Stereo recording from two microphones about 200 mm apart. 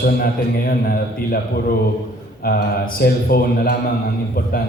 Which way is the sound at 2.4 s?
45° left (ahead or behind).